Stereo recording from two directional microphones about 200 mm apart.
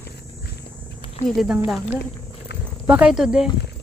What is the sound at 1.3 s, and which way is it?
Speech, 5° right (ahead or behind).